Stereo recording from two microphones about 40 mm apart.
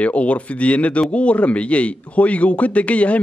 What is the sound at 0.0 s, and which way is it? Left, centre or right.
A man's voice, left.